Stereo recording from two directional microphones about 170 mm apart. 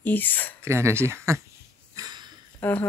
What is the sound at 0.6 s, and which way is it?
Speech, 15° right (ahead or behind).